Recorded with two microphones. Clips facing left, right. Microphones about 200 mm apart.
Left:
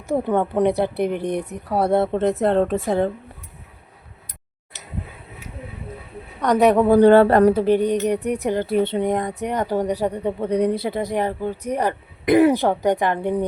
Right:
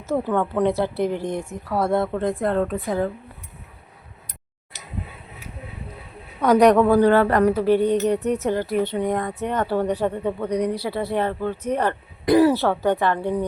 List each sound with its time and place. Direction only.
0.0 s speech: 15° left (ahead or behind)
6.4 s speech: centre (ahead or behind)
6.8 s speech: 25° left (ahead or behind)
8.6 s speech: 30° left (ahead or behind)